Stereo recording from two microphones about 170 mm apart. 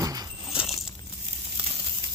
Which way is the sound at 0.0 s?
20° right (ahead or behind).